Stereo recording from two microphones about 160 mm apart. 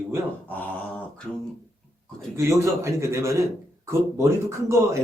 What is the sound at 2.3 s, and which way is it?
A man's voice, 20° right (ahead or behind).